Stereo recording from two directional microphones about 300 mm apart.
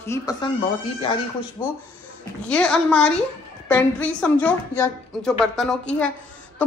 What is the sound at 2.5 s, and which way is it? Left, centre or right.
A woman's voice, centre.